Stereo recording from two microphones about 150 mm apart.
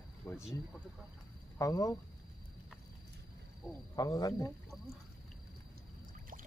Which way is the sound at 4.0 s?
25° left (ahead or behind).